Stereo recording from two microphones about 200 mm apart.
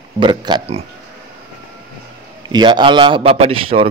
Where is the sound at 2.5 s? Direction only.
25° right (ahead or behind).